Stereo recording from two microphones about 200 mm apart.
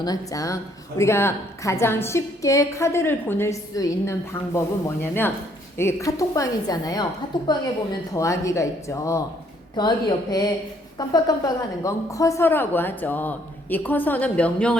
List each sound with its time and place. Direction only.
0.0 s a woman's voice: 20° left (ahead or behind)